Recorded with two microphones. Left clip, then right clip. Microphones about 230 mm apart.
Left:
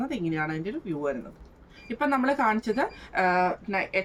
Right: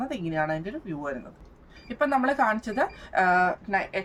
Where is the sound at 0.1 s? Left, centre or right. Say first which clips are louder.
Right 2 dB; centre.